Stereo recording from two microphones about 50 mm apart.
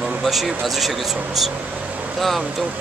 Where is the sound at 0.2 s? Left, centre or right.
Centre.